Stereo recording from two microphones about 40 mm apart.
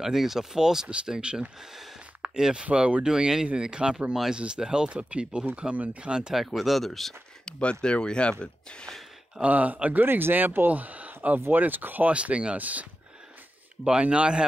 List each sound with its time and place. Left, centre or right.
0.0 s speech: centre
6.3 s speech: centre
7.8 s speech: left
9.4 s speech: right
10.0 s speech: right
10.7 s speech: right
12.1 s speech: right
12.5 s speech: right
14.0 s speech: right